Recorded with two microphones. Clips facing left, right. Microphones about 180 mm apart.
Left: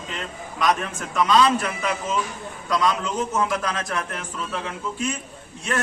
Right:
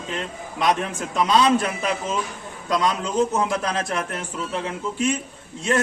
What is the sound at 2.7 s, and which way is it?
A man's voice, 30° right (ahead or behind).